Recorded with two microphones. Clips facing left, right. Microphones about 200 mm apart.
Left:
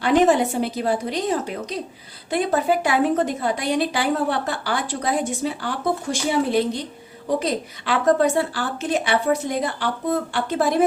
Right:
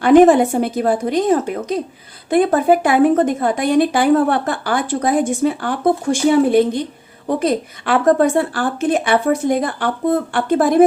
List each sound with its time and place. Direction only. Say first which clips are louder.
0.0 s speech: right 8 dB; 50° right (ahead or behind)